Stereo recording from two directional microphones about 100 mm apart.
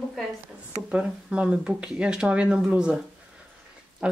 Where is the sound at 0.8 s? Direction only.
10° right (ahead or behind).